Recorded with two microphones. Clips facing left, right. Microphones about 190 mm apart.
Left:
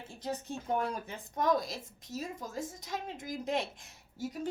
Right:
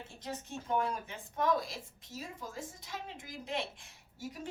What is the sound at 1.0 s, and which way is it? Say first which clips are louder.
A woman's voice: left 2 dB; 40° left (ahead or behind).